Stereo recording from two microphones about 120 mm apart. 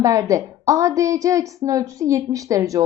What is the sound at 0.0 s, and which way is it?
A woman's voice, 25° right (ahead or behind).